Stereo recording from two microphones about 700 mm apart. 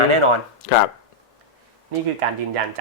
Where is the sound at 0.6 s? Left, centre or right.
Left.